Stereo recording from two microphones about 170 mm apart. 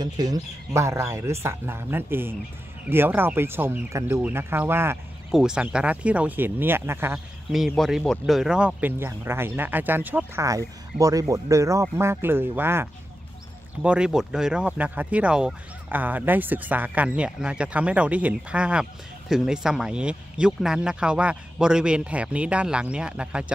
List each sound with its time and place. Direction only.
0.0 s speech: 20° right (ahead or behind)
7.5 s speech: centre (ahead or behind)
13.8 s speech: 5° right (ahead or behind)